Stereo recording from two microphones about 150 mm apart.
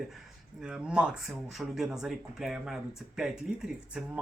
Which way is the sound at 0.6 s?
5° right (ahead or behind).